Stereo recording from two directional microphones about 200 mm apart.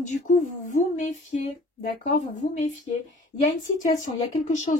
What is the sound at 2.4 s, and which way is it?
Speech, 35° left (ahead or behind).